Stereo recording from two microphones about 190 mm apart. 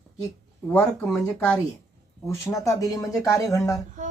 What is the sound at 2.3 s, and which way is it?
A woman's voice, 15° left (ahead or behind).